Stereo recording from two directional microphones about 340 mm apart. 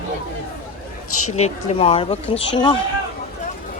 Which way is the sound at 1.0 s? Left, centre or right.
Left.